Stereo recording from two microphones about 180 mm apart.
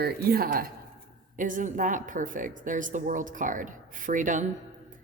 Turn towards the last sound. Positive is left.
turn(degrees=-45)  # may be behind; listen again after turning